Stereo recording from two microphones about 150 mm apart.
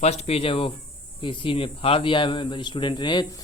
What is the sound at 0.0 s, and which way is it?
Speech, 45° left (ahead or behind).